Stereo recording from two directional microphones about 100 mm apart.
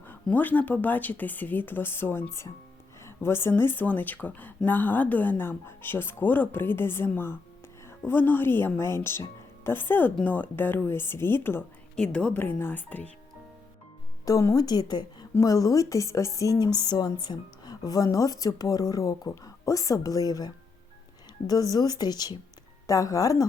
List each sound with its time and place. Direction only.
0.0 s a woman's voice: 20° left (ahead or behind)
11.9 s a woman's voice: 10° left (ahead or behind)
14.3 s a woman's voice: 35° left (ahead or behind)
21.7 s a woman's voice: 40° left (ahead or behind)